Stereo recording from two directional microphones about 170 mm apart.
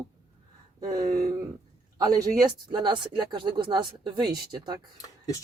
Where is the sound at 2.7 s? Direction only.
25° right (ahead or behind).